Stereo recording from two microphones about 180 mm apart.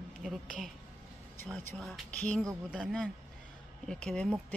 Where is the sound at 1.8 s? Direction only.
5° left (ahead or behind).